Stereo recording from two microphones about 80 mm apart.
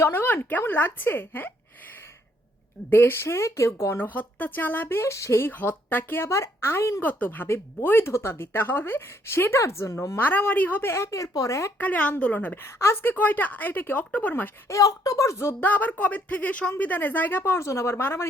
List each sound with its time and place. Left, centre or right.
0.0 s a woman's voice: left
2.9 s a woman's voice: left
5.5 s speech: left
7.0 s speech: left
10.2 s a woman's voice: left
11.8 s a woman's voice: centre
12.6 s a woman's voice: left
14.7 s speech: left
15.6 s a woman's voice: left
17.6 s speech: left